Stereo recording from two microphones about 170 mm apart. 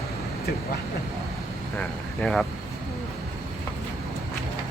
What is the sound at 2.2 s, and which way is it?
Speech, 5° left (ahead or behind).